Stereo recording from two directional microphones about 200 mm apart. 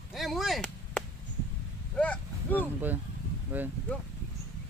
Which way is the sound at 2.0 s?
5° left (ahead or behind).